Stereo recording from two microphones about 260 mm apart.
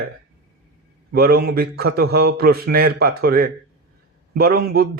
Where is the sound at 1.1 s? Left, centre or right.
Right.